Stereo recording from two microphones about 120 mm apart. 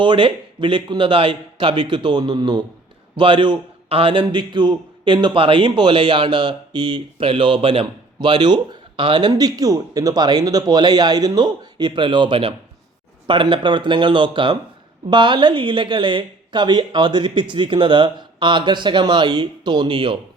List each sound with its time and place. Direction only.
0.0 s a man's voice: 45° right (ahead or behind)